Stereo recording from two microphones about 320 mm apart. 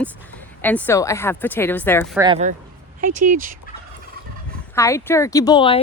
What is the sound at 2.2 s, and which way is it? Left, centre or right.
Speech, centre.